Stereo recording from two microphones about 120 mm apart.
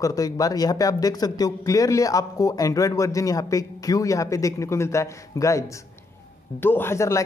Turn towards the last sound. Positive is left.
turn(degrees=25)  # may be behind; listen again after turning